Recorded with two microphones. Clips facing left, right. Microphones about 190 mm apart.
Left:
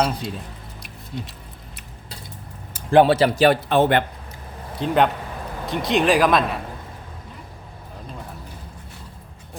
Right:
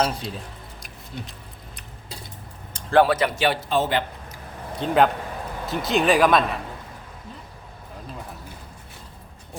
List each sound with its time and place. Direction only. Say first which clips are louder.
0.0 s speech: left 1 dB; centre (ahead or behind)
2.9 s speech: left 4 dB; 25° left (ahead or behind); by 3.6 s 40° left (ahead or behind)
3.7 s a man's voice: left 5 dB; 60° left (ahead or behind)
4.8 s speech: even; centre (ahead or behind)